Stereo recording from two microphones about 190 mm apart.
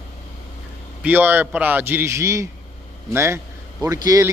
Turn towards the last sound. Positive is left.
turn(degrees=-20)  # may be behind; listen again after turning